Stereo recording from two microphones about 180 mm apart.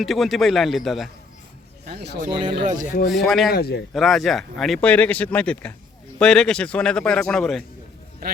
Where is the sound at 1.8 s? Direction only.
65° right (ahead or behind).